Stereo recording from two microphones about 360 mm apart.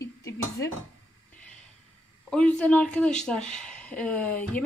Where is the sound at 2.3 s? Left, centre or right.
Centre.